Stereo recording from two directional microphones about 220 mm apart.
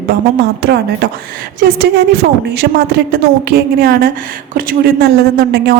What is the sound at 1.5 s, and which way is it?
A woman's voice, 45° right (ahead or behind).